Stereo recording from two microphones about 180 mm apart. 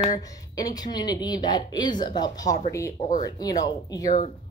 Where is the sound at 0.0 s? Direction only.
20° left (ahead or behind).